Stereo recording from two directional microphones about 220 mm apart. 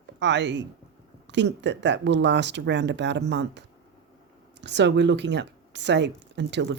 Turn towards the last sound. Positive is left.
turn(degrees=-50)  # may be behind; listen again after turning